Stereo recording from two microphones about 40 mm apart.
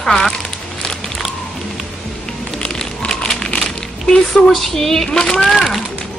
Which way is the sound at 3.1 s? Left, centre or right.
Centre.